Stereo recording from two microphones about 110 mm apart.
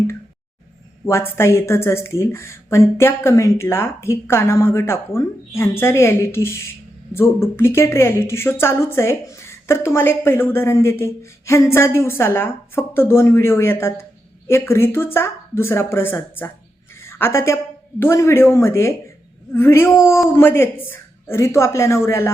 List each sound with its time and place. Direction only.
1.0 s a woman's voice: 25° left (ahead or behind)
17.0 s a sound: 20° left (ahead or behind)
18.0 s a woman's voice: 25° left (ahead or behind)